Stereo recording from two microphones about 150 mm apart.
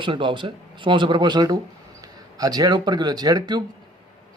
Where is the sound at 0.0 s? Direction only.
35° right (ahead or behind).